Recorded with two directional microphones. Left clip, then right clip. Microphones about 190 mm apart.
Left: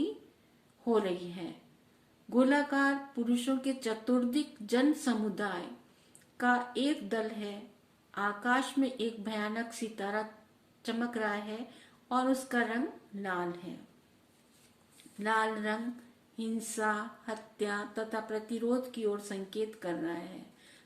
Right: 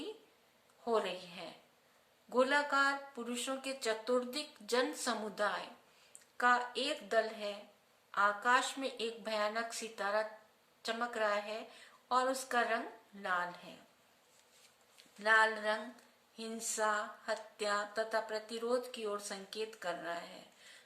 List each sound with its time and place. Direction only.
0.9 s speech: 15° right (ahead or behind)
15.2 s speech: 15° right (ahead or behind)